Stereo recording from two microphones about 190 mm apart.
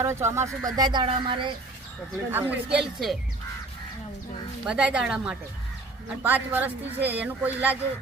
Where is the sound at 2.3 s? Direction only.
10° right (ahead or behind).